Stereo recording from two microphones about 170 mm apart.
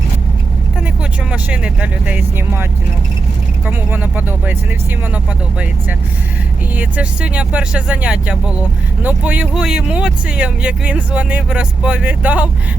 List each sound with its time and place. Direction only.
1.3 s speech: 10° right (ahead or behind)
3.7 s speech: 10° right (ahead or behind)
6.7 s speech: 10° right (ahead or behind)